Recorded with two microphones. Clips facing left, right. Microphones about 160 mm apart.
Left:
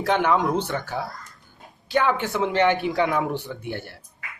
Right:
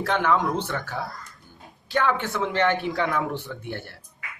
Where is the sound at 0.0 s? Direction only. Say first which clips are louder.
Left 2 dB; 15° left (ahead or behind).